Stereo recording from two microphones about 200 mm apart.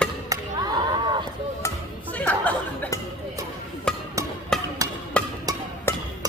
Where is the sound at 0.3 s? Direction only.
15° right (ahead or behind).